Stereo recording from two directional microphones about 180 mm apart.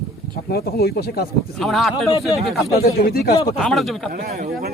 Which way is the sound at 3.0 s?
60° left (ahead or behind).